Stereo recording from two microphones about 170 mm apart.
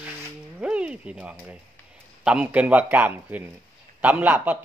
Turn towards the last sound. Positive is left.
turn(degrees=-10)  # may be behind; listen again after turning